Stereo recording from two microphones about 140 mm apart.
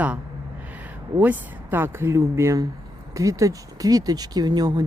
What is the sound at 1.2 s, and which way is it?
Speech, 15° right (ahead or behind).